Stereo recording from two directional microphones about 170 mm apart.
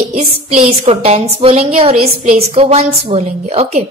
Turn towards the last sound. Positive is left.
turn(degrees=-40)  # may be behind; listen again after turning